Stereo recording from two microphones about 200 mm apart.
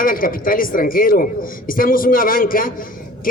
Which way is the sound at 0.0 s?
45° left (ahead or behind).